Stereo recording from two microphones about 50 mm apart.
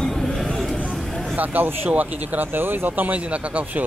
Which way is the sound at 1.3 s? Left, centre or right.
Right.